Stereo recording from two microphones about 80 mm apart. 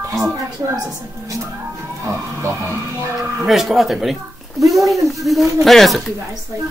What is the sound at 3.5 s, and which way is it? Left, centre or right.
Speech, centre.